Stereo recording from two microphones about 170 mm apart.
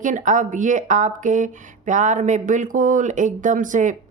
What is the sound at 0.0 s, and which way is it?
Speech, 50° right (ahead or behind).